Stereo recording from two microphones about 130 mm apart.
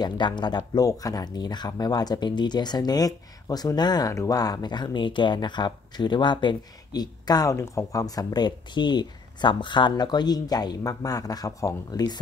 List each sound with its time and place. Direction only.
0.0 s speech: 35° left (ahead or behind)